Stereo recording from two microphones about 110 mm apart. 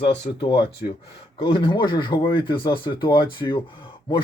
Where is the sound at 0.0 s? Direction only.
50° left (ahead or behind).